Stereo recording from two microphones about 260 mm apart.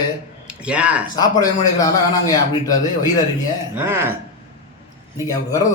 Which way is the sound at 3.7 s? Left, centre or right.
Centre.